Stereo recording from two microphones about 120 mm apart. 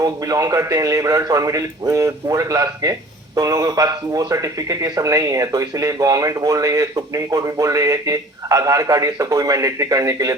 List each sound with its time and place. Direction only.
0.0 s speech: 30° right (ahead or behind)